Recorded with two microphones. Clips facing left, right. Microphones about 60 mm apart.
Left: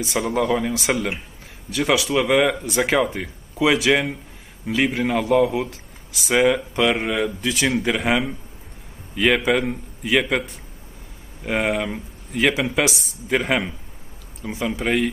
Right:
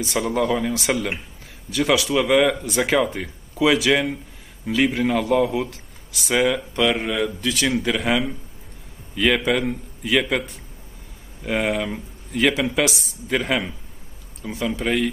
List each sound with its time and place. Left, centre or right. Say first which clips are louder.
0.0 s a man's voice: even; centre